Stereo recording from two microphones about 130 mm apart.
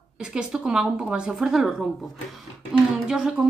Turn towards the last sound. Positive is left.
turn(degrees=-5)  # may be behind; listen again after turning